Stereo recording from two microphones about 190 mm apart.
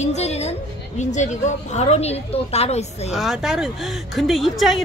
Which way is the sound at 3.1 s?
5° right (ahead or behind).